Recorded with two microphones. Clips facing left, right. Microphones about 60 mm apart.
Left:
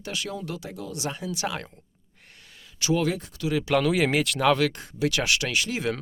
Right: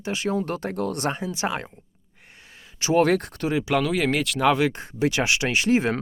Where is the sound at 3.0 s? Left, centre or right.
Right.